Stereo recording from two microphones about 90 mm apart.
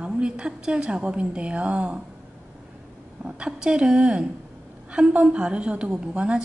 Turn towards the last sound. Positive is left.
turn(degrees=-10)  # may be behind; listen again after turning